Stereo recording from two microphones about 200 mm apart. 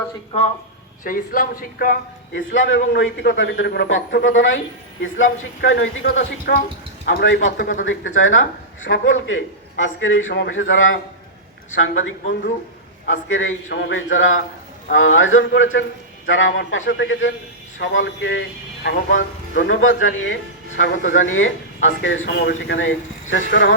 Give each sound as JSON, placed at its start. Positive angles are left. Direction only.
{"t": 1.0, "sound": "speech", "side_deg": 45}
{"t": 2.3, "sound": "speech", "side_deg": 70}
{"t": 6.5, "sound": "speech", "side_deg": 45}
{"t": 13.1, "sound": "a man's voice", "side_deg": 75}
{"t": 22.4, "sound": "speech", "side_deg": 60}